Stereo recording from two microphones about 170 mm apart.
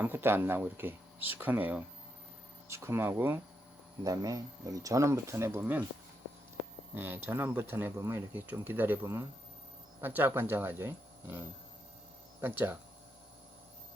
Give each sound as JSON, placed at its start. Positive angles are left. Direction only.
{"t": 0.0, "sound": "speech", "side_deg": -15}
{"t": 6.9, "sound": "speech", "side_deg": -10}